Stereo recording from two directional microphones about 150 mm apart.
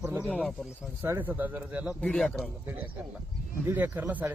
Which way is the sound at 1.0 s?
15° right (ahead or behind).